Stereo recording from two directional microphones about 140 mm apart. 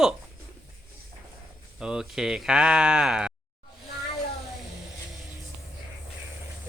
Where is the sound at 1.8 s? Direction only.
5° right (ahead or behind).